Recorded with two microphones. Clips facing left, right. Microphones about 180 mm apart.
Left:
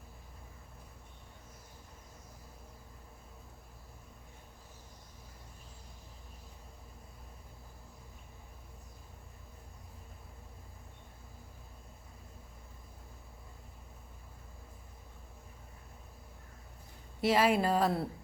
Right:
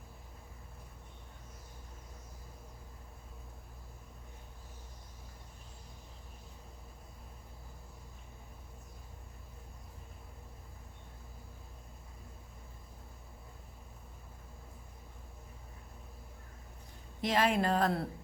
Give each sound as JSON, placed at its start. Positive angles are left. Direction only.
{"t": 17.2, "sound": "speech", "side_deg": 10}